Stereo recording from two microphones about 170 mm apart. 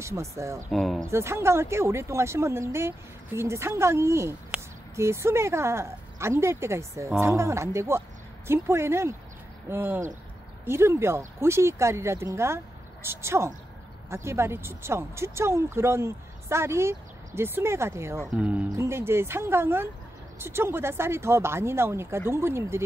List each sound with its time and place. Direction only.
0.0 s speech: 15° right (ahead or behind)
0.7 s speech: centre (ahead or behind)
1.0 s speech: 15° right (ahead or behind)